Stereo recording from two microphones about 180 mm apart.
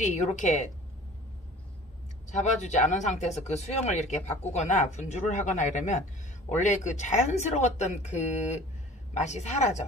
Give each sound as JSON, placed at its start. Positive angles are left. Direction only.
{"t": 0.0, "sound": "speech", "side_deg": 40}
{"t": 2.3, "sound": "speech", "side_deg": 40}